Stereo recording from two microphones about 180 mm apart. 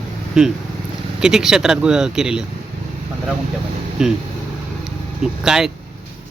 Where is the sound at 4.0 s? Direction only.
5° right (ahead or behind).